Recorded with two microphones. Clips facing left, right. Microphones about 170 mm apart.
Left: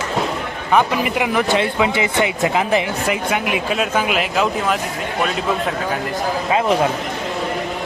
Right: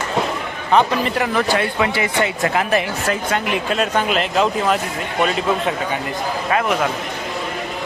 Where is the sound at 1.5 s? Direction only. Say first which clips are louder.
Left 1 dB; 20° left (ahead or behind); by 6.0 s centre (ahead or behind).